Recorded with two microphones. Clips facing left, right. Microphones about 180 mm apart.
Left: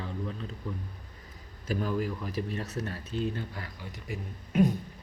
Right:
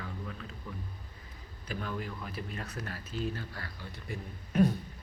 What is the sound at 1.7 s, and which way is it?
Speech, 40° left (ahead or behind).